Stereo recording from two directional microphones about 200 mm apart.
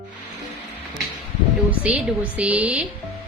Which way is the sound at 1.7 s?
5° right (ahead or behind).